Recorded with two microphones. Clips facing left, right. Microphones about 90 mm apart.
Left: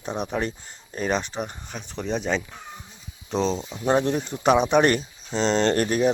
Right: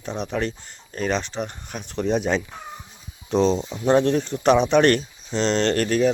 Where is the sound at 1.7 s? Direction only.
Centre (ahead or behind).